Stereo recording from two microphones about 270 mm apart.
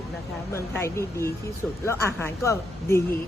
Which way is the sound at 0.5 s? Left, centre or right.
Centre.